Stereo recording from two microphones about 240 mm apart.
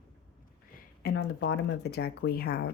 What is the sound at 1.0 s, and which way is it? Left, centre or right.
A woman's voice, left.